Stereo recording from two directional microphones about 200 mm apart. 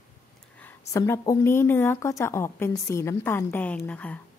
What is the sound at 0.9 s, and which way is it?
A woman's voice, 15° left (ahead or behind).